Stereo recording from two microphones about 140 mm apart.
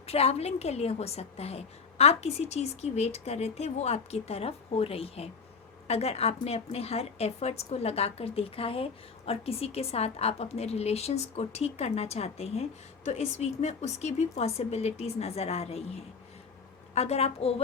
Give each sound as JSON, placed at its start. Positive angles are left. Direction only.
{"t": 0.0, "sound": "a woman's voice", "side_deg": 45}
{"t": 16.9, "sound": "a woman's voice", "side_deg": 50}